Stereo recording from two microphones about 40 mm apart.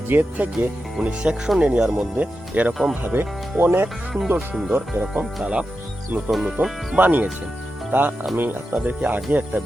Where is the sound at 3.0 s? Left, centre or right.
Right.